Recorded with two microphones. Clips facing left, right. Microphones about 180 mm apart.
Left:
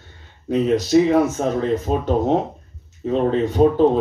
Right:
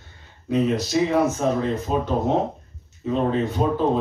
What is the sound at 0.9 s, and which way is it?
Speech, 40° left (ahead or behind).